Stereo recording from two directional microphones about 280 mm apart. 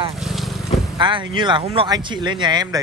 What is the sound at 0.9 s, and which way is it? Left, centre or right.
Speech, centre.